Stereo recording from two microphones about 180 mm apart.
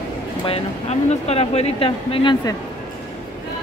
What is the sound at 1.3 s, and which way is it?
Speech, 35° left (ahead or behind).